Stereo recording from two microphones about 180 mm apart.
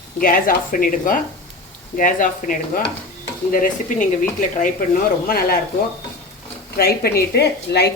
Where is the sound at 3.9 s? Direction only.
45° left (ahead or behind).